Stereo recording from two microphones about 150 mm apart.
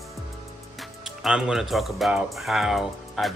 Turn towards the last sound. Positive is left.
turn(degrees=0)  # may be behind; listen again after turning